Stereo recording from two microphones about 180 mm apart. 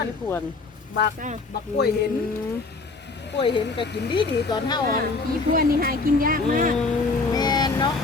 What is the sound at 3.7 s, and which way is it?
Speech, 25° left (ahead or behind).